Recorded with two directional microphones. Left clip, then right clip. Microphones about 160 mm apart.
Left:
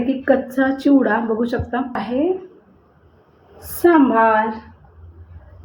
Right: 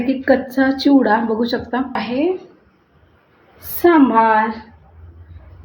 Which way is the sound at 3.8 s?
15° right (ahead or behind).